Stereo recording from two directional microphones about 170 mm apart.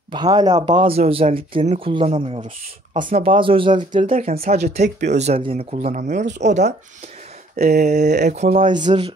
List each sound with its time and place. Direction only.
0.1 s speech: 25° right (ahead or behind); by 3.2 s 50° right (ahead or behind)
3.2 s speech: 30° right (ahead or behind)
3.9 s speech: 45° right (ahead or behind)
7.5 s speech: 65° right (ahead or behind)
7.8 s speech: 45° right (ahead or behind)
8.7 s speech: 30° right (ahead or behind)